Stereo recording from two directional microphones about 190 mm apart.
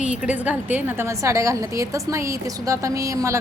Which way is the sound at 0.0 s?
5° right (ahead or behind).